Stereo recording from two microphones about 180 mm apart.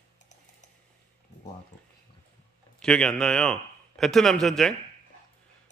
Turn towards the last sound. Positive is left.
turn(degrees=0)  # may be behind; listen again after turning